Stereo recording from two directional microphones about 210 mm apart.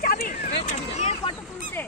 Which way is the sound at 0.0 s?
40° left (ahead or behind).